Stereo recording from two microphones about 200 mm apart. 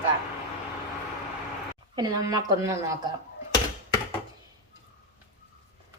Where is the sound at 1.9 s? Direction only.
20° right (ahead or behind).